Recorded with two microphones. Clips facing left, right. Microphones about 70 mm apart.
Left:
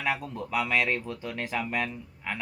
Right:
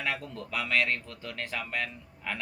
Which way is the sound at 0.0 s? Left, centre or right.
Centre.